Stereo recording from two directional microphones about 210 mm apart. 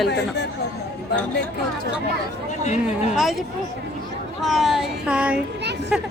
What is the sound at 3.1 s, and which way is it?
Speech, centre (ahead or behind).